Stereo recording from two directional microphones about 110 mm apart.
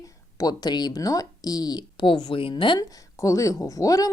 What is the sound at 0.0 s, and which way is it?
Speech, 30° left (ahead or behind).